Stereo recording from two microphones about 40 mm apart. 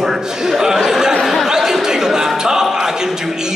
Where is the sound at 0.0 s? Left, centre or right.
Centre.